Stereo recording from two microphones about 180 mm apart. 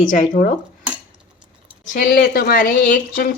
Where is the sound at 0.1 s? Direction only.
45° left (ahead or behind).